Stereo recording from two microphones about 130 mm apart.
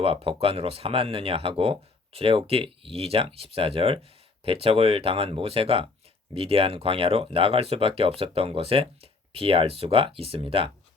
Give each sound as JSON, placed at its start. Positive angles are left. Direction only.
{"t": 0.0, "sound": "speech", "side_deg": -45}